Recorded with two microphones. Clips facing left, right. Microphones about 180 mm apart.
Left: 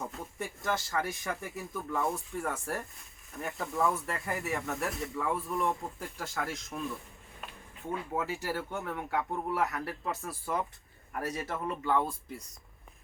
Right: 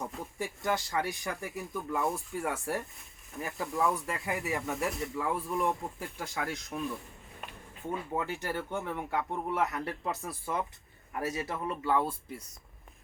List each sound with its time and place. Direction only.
0.0 s speech: centre (ahead or behind)